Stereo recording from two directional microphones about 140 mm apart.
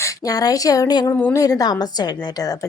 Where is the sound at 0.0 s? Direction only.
25° left (ahead or behind).